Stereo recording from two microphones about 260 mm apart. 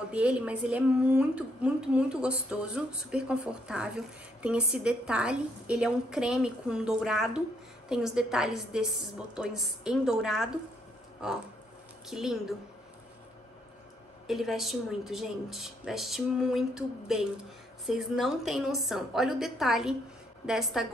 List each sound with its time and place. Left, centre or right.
0.1 s a woman's voice: centre
12.1 s a woman's voice: centre
14.2 s a woman's voice: centre